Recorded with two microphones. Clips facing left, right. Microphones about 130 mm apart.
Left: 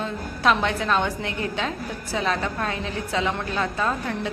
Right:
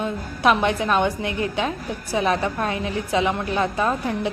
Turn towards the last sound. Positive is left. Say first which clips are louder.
# right 3 dB
turn(degrees=-15)  # may be behind; listen again after turning